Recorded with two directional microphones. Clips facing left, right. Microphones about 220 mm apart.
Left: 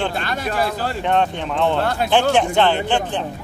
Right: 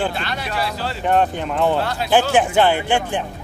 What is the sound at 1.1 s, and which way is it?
A man's voice, 5° right (ahead or behind).